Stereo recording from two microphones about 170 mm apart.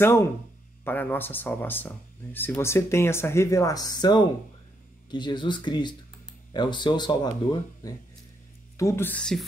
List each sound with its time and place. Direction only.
0.0 s speech: 15° left (ahead or behind)
8.7 s speech: 15° left (ahead or behind)